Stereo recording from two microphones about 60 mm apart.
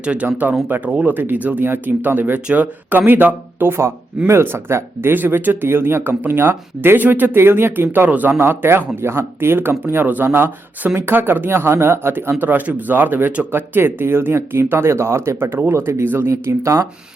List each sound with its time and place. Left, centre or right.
0.0 s speech: centre
0.3 s speech: right
4.3 s speech: right
8.3 s speech: right
16.3 s speech: right